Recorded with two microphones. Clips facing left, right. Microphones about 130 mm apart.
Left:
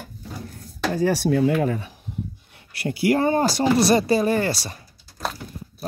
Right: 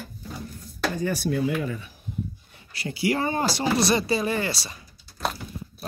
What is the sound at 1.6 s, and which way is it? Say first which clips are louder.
Speech: left 7 dB; 75° left (ahead or behind).